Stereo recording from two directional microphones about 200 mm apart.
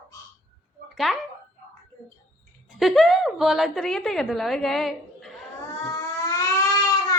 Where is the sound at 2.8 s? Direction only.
Centre (ahead or behind).